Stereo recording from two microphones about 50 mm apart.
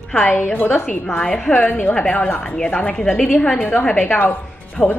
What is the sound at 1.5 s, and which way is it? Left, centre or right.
Speech, left.